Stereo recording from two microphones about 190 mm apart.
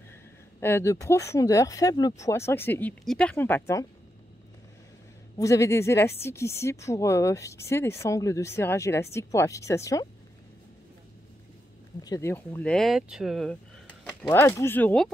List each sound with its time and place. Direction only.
0.6 s a woman's voice: 15° left (ahead or behind)
5.4 s a woman's voice: 15° left (ahead or behind)
12.0 s speech: 15° left (ahead or behind); by 13.6 s centre (ahead or behind)
14.2 s a woman's voice: 15° left (ahead or behind)